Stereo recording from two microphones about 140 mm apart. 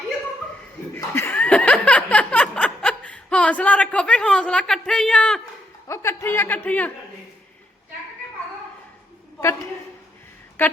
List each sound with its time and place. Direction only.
0.9 s chuckle: 20° left (ahead or behind)
5.9 s a man's voice: 20° left (ahead or behind)
10.6 s speech: 15° left (ahead or behind)